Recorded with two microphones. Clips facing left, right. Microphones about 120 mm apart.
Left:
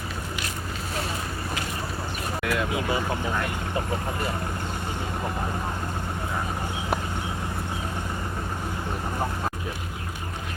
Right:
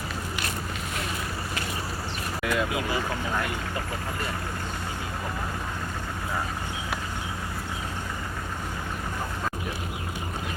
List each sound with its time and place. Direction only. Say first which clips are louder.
2.4 s speech: right 1 dB; centre (ahead or behind)
2.7 s speech: left 2 dB; 25° left (ahead or behind)